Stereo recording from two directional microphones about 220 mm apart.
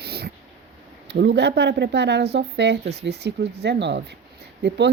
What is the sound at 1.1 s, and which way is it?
Speech, 50° right (ahead or behind).